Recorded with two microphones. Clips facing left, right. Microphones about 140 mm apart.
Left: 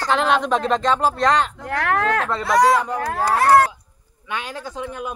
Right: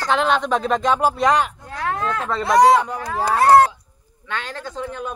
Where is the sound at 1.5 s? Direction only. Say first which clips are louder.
Left 4 dB; 80° left.